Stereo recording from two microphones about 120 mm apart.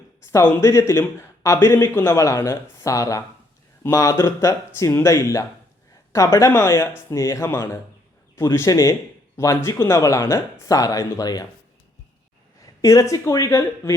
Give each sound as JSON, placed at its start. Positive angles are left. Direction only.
{"t": 0.3, "sound": "a man's voice", "side_deg": 20}
{"t": 12.8, "sound": "a man's voice", "side_deg": 25}